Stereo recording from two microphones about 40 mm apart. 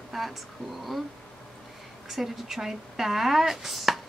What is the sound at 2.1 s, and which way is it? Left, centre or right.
Speech, centre.